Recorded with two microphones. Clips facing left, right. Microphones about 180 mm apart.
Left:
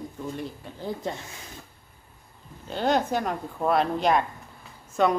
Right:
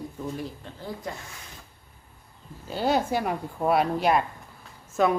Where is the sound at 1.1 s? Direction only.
25° left (ahead or behind).